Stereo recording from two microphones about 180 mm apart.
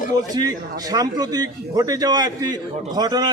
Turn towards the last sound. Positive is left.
turn(degrees=-20)  # may be behind; listen again after turning